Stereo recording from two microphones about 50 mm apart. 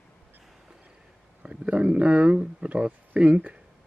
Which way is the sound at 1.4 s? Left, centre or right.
Right.